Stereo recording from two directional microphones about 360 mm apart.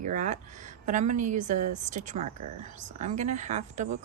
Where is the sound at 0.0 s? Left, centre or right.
Centre.